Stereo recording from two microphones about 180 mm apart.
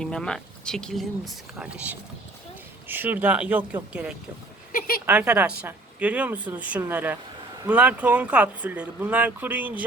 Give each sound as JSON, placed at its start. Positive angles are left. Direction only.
{"t": 0.0, "sound": "a woman's voice", "side_deg": 5}
{"t": 4.7, "sound": "a sound", "side_deg": 55}
{"t": 5.0, "sound": "a woman's voice", "side_deg": -5}